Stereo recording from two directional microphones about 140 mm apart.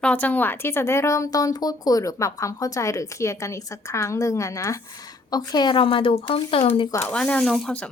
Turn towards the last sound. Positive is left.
turn(degrees=5)  # may be behind; listen again after turning